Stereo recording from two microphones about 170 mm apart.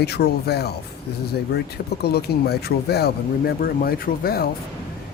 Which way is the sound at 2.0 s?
70° left (ahead or behind).